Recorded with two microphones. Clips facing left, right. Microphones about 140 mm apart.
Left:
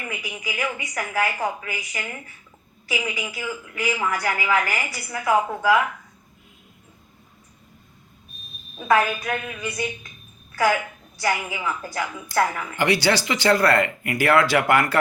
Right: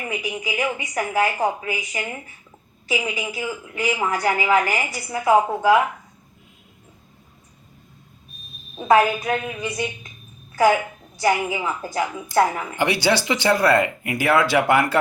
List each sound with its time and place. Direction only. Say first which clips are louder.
0.0 s a woman's voice: right 5 dB; 20° right (ahead or behind)
8.7 s a woman's voice: right 4 dB; 25° right (ahead or behind)